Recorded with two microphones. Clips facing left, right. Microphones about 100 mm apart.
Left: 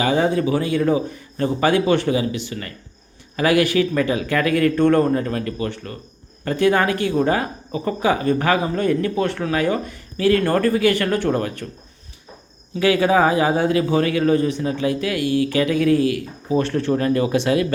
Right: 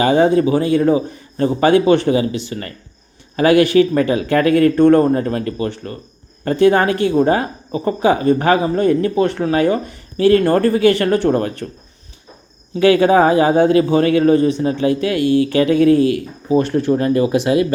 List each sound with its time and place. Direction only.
0.0 s speech: 40° right (ahead or behind)
2.5 s speech: 40° right (ahead or behind)
13.0 s speech: 40° right (ahead or behind)
16.6 s speech: 15° right (ahead or behind)